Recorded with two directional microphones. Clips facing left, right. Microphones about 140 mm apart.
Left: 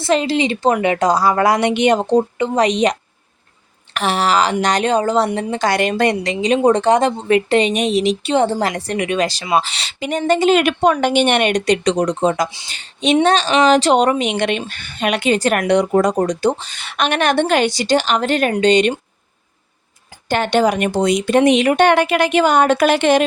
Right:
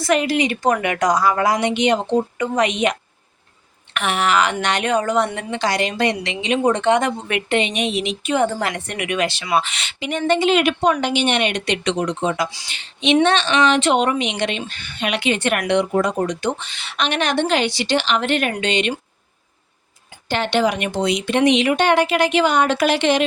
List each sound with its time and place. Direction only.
0.0 s a woman's voice: 30° left (ahead or behind)
1.4 s a woman's voice: 60° left (ahead or behind); by 5.6 s 35° left (ahead or behind)
5.6 s speech: 55° left (ahead or behind)
20.2 s speech: 45° left (ahead or behind)